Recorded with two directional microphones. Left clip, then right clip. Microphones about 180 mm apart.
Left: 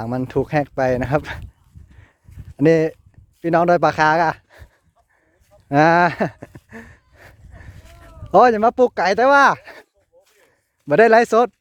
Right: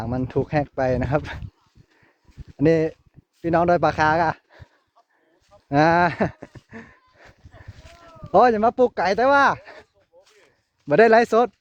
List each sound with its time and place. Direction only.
0.0 s speech: 45° left (ahead or behind)
2.6 s a man's voice: 45° left (ahead or behind)
6.1 s speech: 30° left (ahead or behind)
6.7 s a sound: 40° left (ahead or behind)
8.0 s speech: 45° left (ahead or behind)
10.8 s a man's voice: 35° left (ahead or behind)